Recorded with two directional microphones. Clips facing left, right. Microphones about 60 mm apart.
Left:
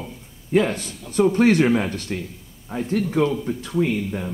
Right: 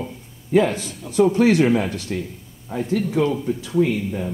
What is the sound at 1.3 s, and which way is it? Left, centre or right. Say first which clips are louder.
Speech: even; left.